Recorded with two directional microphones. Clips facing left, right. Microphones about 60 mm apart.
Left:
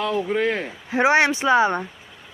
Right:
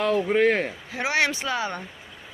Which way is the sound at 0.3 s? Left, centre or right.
Right.